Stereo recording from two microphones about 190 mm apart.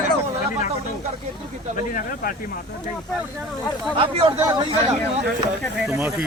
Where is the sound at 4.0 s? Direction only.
30° right (ahead or behind).